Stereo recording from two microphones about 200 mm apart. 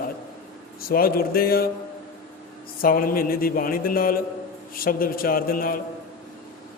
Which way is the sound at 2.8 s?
45° left (ahead or behind).